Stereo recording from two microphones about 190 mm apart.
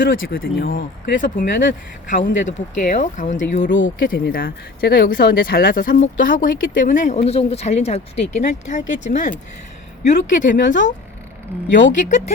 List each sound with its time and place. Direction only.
0.3 s speech: 50° left (ahead or behind)
11.9 s speech: 40° left (ahead or behind)